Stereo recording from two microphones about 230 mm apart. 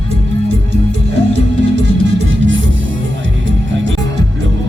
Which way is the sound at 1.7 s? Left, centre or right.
Right.